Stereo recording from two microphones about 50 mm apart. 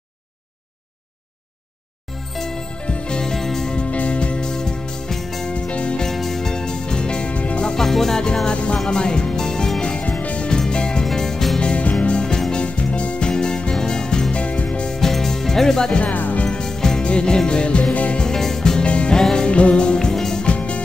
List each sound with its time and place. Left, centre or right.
2.3 s music: centre
2.8 s music: left
3.7 s music: left; by 5.5 s centre
5.5 s music: left
6.0 s music: centre; by 7.7 s left
7.7 s music: centre
8.5 s music: left
11.6 s music: left
14.9 s music: centre
16.0 s music: left
16.4 s music: centre
18.2 s music: centre
20.4 s music: left